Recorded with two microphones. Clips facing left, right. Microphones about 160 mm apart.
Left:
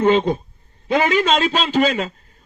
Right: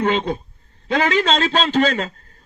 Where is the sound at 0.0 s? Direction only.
20° left (ahead or behind).